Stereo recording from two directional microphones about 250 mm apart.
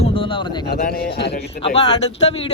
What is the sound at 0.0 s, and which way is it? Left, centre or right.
Speech, left.